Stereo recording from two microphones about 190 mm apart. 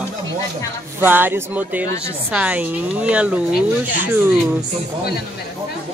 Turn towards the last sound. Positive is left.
turn(degrees=-10)  # may be behind; listen again after turning